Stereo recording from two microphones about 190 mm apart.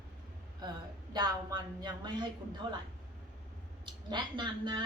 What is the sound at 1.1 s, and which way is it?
Speech, 20° right (ahead or behind).